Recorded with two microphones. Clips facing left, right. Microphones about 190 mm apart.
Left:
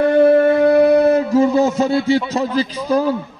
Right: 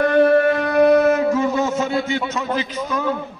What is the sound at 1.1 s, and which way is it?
A man's voice, 30° left (ahead or behind).